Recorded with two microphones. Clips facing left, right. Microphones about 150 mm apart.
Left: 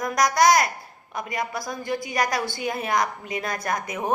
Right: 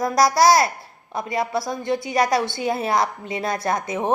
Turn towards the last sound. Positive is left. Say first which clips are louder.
# right 4 dB
turn(degrees=-25)  # may be behind; listen again after turning